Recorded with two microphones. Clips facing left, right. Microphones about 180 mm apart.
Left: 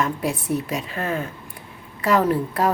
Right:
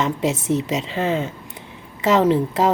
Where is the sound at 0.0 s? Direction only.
20° right (ahead or behind).